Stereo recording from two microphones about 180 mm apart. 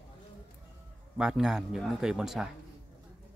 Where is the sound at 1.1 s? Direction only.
5° right (ahead or behind).